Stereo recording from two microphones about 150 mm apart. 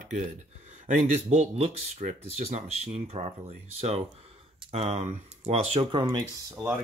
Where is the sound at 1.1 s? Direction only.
45° right (ahead or behind).